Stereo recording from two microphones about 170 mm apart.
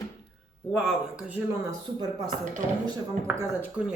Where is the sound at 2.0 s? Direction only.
25° right (ahead or behind).